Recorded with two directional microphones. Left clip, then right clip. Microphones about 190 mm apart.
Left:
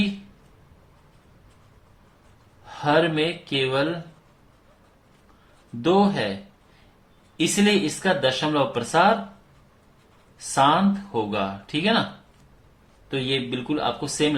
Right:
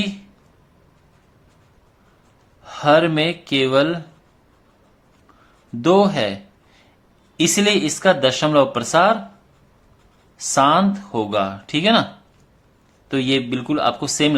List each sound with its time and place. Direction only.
2.6 s speech: 45° right (ahead or behind)
5.8 s speech: 45° right (ahead or behind)
7.3 s speech: 45° right (ahead or behind)
10.3 s speech: 45° right (ahead or behind)
13.1 s speech: 45° right (ahead or behind)